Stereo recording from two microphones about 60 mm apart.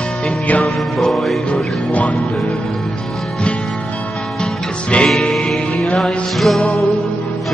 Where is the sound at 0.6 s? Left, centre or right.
Centre.